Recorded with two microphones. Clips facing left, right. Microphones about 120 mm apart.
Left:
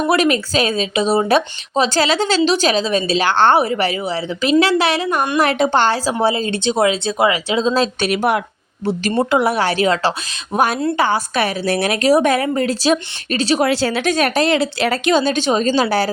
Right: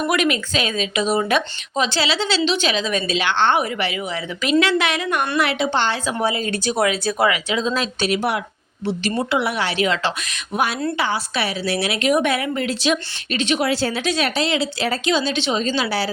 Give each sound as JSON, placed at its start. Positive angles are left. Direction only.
{"t": 0.1, "sound": "speech", "side_deg": 35}
{"t": 5.4, "sound": "speech", "side_deg": 45}
{"t": 6.1, "sound": "speech", "side_deg": 30}
{"t": 8.0, "sound": "speech", "side_deg": 55}
{"t": 8.9, "sound": "speech", "side_deg": 45}
{"t": 13.7, "sound": "speech", "side_deg": 75}
{"t": 14.0, "sound": "speech", "side_deg": 50}